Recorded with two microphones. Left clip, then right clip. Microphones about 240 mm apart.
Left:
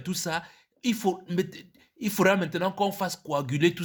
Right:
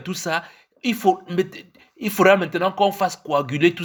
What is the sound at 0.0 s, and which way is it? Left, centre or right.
Speech, left.